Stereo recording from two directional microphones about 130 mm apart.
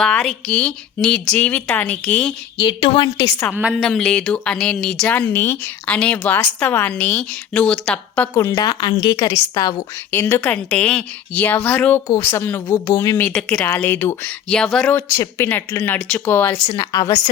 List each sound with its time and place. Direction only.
0.0 s speech: 5° left (ahead or behind)
2.6 s a woman's voice: 40° left (ahead or behind)
3.5 s a woman's voice: 10° right (ahead or behind)
3.8 s speech: 5° left (ahead or behind)
8.4 s a woman's voice: 25° left (ahead or behind)
10.1 s a woman's voice: 20° left (ahead or behind)
13.2 s speech: 10° left (ahead or behind)
14.5 s speech: 5° left (ahead or behind)
14.9 s speech: 20° left (ahead or behind)
16.7 s a woman's voice: 25° left (ahead or behind)